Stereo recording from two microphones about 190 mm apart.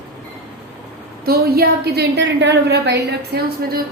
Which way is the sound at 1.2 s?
55° right (ahead or behind).